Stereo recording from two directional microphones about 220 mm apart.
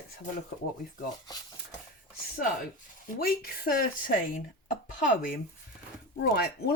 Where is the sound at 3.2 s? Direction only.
45° left (ahead or behind).